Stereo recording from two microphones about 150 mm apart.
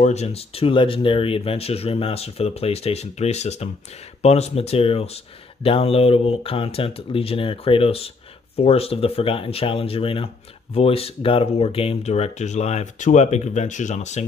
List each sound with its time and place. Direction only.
0.0 s speech: 45° left (ahead or behind)